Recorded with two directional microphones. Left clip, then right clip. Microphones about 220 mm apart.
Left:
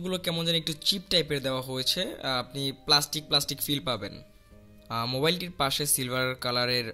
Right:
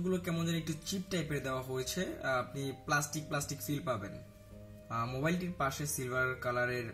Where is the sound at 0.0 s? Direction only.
40° left (ahead or behind).